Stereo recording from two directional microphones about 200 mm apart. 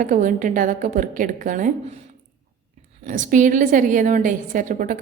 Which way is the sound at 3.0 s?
40° right (ahead or behind).